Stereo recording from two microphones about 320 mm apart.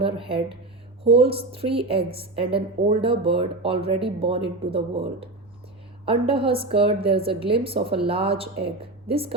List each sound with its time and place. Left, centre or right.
0.0 s a woman's voice: centre